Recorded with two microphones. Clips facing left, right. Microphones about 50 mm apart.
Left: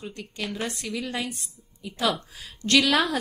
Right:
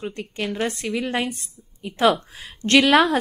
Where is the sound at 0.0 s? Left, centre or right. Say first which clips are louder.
Right 6 dB; right.